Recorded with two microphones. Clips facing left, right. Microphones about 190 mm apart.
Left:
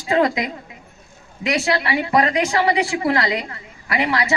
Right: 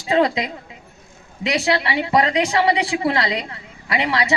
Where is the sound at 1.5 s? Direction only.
20° right (ahead or behind).